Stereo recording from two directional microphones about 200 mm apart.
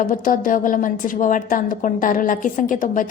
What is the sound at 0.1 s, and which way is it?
A woman's voice, 40° left (ahead or behind).